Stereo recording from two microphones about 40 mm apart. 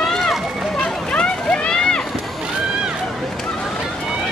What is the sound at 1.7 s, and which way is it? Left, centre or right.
Rowboat, centre.